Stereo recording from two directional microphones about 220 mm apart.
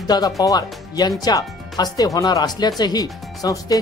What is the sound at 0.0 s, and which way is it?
Speech, 20° left (ahead or behind).